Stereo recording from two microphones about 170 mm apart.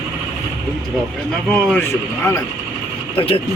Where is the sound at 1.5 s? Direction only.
5° left (ahead or behind).